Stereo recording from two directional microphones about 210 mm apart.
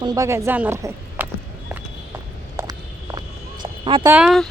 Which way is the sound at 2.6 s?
15° right (ahead or behind).